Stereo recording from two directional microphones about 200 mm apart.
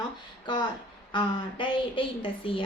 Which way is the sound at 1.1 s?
25° left (ahead or behind).